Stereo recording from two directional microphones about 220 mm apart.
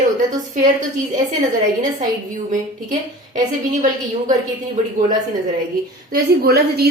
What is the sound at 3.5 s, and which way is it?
Speech, 35° right (ahead or behind).